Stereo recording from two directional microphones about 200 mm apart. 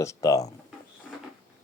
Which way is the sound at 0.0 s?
15° left (ahead or behind).